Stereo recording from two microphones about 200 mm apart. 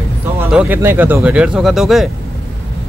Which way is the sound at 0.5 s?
5° right (ahead or behind).